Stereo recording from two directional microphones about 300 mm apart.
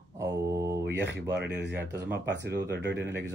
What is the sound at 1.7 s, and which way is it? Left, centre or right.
Speech, centre.